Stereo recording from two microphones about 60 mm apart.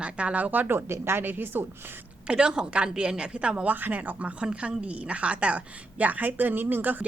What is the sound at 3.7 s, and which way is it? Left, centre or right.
A woman's voice, right.